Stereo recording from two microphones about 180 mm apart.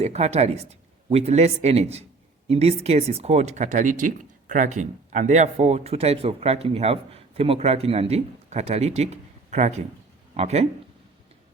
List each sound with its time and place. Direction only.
0.0 s speech: 35° right (ahead or behind)